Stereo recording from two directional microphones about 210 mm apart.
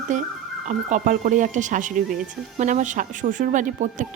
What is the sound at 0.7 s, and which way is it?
A woman's voice, 35° right (ahead or behind).